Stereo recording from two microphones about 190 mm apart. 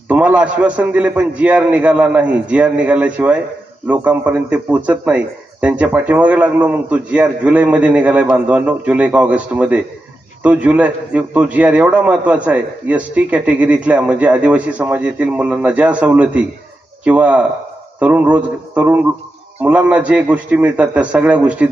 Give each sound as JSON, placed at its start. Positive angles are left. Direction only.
{"t": 0.1, "sound": "a man's voice", "side_deg": -10}